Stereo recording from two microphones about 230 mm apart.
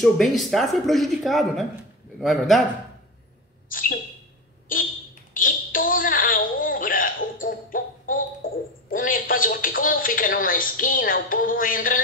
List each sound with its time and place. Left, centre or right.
0.0 s speech: centre
3.7 s speech: left
5.3 s a sound: left
8.9 s speech: left